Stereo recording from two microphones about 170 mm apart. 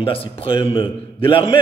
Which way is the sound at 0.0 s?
35° left (ahead or behind).